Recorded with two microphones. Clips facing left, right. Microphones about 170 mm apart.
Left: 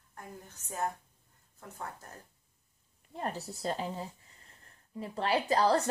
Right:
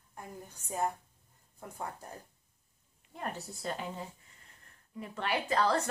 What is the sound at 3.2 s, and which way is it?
A woman's voice, 35° left (ahead or behind).